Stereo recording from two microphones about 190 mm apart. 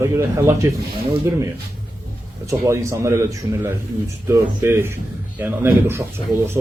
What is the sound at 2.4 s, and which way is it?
Speech, 15° right (ahead or behind).